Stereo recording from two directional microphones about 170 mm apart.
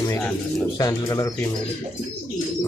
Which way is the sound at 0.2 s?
10° left (ahead or behind).